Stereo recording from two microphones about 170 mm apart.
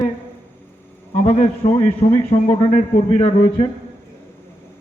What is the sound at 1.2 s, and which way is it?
A man's voice, 40° left (ahead or behind).